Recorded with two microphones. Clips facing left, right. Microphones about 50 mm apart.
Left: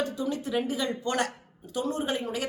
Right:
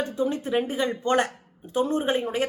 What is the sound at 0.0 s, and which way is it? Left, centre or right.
A woman's voice, right.